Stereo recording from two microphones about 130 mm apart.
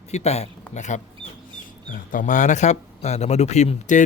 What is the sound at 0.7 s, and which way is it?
Speech, 65° left (ahead or behind).